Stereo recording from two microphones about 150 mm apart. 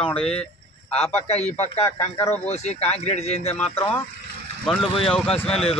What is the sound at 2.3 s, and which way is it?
Speech, 45° left (ahead or behind).